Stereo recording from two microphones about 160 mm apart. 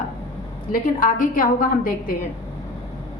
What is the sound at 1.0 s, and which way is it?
A woman's voice, 60° left (ahead or behind).